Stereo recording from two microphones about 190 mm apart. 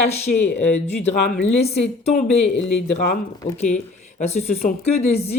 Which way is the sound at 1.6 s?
35° left (ahead or behind).